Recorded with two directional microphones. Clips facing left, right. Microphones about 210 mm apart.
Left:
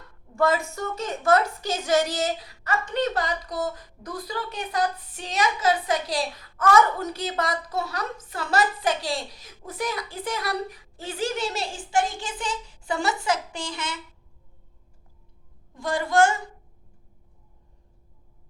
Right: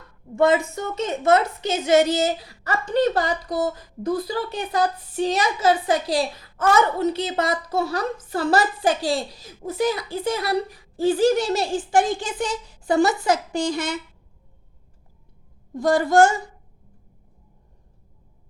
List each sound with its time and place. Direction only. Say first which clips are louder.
0.3 s a woman's voice: right 5 dB; 20° right (ahead or behind); by 13.9 s 40° right (ahead or behind)
15.7 s a child's voice: right 6 dB; 40° right (ahead or behind)